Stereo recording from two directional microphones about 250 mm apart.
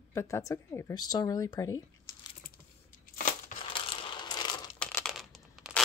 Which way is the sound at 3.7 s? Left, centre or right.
Left.